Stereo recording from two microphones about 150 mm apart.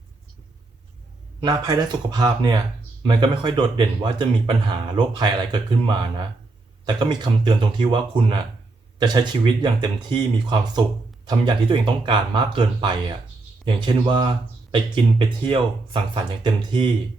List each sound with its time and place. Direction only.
1.4 s speech: 25° right (ahead or behind)